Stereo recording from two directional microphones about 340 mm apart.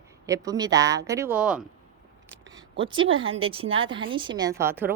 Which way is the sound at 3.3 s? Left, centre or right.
Centre.